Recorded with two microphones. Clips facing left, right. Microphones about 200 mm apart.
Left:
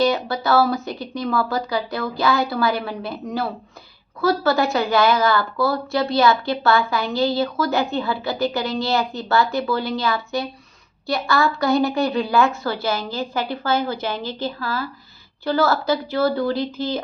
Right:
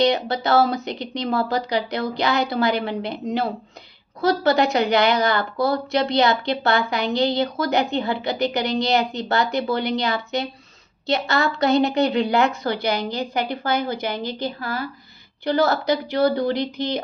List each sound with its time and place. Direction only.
0.0 s a woman's voice: 20° right (ahead or behind)